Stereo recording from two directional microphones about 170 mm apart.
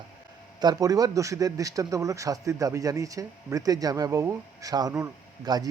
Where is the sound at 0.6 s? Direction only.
20° right (ahead or behind).